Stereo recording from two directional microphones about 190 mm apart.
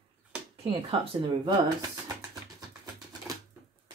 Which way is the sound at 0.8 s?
30° right (ahead or behind).